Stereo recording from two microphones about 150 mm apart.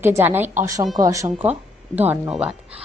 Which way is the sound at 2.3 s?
5° right (ahead or behind).